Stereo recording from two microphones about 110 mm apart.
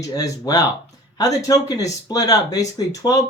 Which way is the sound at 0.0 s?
30° left (ahead or behind).